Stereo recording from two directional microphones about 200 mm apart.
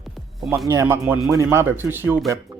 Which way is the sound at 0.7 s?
15° right (ahead or behind).